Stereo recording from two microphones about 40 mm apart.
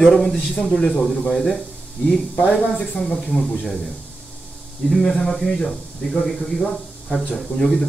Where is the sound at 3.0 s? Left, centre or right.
Centre.